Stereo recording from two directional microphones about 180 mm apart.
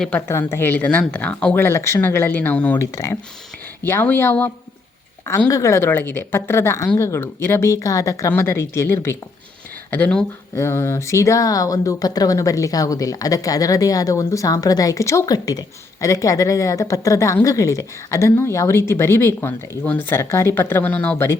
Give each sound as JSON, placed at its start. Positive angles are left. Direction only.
{"t": 0.0, "sound": "speech", "side_deg": 10}